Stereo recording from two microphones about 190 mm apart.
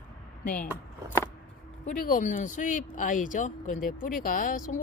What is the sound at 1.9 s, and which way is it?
Speech, 45° left (ahead or behind).